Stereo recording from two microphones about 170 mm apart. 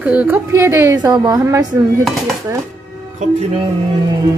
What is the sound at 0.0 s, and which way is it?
Speech, 10° right (ahead or behind).